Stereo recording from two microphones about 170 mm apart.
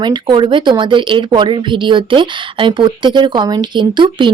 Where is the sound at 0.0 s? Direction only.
25° right (ahead or behind).